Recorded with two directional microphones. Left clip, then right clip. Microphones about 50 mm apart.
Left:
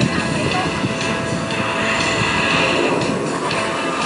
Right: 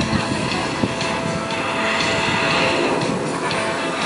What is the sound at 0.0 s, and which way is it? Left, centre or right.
Music, left.